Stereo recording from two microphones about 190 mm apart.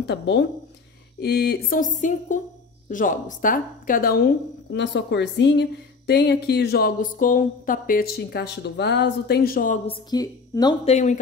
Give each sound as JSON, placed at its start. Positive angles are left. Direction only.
{"t": 0.0, "sound": "a woman's voice", "side_deg": 65}
{"t": 4.6, "sound": "a woman's voice", "side_deg": 70}
{"t": 9.8, "sound": "a woman's voice", "side_deg": 20}
{"t": 10.9, "sound": "speech", "side_deg": 35}